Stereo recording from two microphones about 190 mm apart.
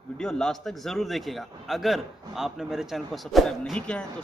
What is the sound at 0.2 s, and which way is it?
A man's voice, 5° left (ahead or behind).